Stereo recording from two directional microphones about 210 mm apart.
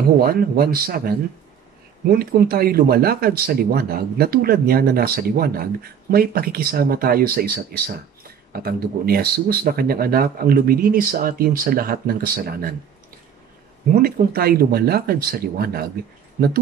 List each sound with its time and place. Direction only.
0.2 s speech: 45° right (ahead or behind)
14.0 s speech: 45° right (ahead or behind)